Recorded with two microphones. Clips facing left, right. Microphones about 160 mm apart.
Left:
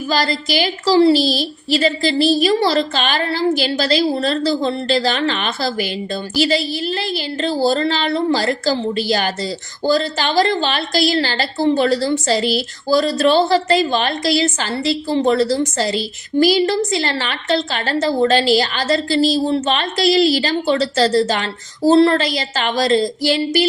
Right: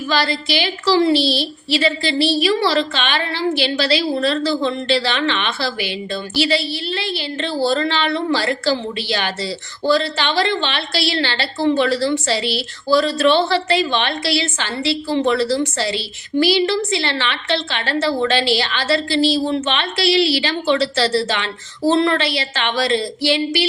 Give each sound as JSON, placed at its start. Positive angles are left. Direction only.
{"t": 0.1, "sound": "a woman's voice", "side_deg": 40}